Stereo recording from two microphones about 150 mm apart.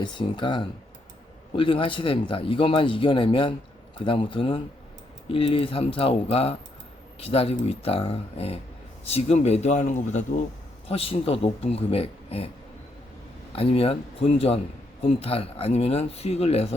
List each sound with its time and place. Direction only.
0.0 s speech: 30° left (ahead or behind); by 10.4 s 55° left (ahead or behind)
10.8 s speech: 40° left (ahead or behind)
13.6 s speech: 40° left (ahead or behind)